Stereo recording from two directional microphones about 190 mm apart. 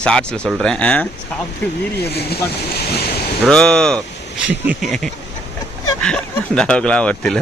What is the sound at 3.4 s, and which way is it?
Speech, 5° left (ahead or behind).